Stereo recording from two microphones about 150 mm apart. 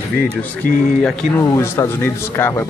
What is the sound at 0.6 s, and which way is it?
Speech, 65° left (ahead or behind).